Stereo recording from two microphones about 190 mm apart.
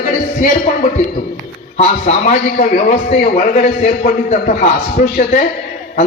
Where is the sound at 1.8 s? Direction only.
40° left (ahead or behind).